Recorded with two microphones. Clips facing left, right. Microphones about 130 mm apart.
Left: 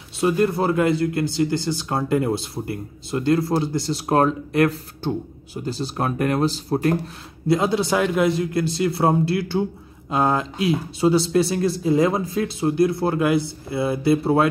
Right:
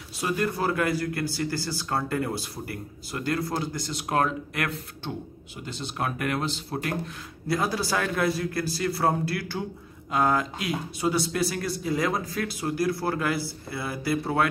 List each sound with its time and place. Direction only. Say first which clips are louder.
0.2 s speech: left 7 dB; 25° left (ahead or behind)
7.4 s speech: left 7 dB; 25° left (ahead or behind)